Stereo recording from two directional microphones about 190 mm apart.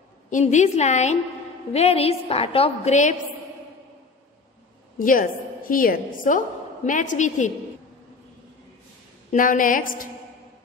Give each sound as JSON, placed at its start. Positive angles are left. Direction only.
{"t": 0.3, "sound": "a woman's voice", "side_deg": 40}
{"t": 4.9, "sound": "a woman's voice", "side_deg": 45}
{"t": 9.3, "sound": "a woman's voice", "side_deg": 45}